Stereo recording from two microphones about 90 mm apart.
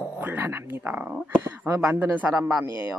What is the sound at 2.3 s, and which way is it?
Speech, 5° right (ahead or behind).